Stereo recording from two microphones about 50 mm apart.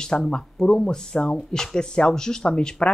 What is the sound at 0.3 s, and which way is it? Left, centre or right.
Speech, centre.